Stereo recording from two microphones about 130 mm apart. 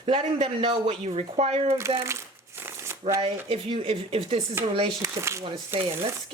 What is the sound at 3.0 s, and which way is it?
Speech, 50° right (ahead or behind).